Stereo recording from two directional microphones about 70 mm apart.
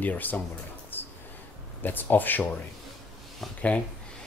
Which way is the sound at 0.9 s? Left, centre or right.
Left.